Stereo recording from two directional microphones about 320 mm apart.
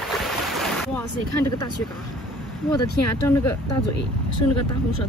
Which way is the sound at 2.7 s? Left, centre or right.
Centre.